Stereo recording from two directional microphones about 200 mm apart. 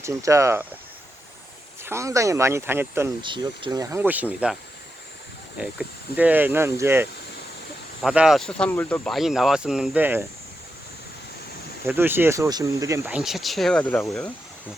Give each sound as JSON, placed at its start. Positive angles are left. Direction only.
{"t": 0.0, "sound": "speech", "side_deg": -15}
{"t": 1.8, "sound": "speech", "side_deg": -15}
{"t": 3.2, "sound": "speech", "side_deg": -25}
{"t": 5.5, "sound": "speech", "side_deg": -5}
{"t": 11.9, "sound": "speech", "side_deg": -10}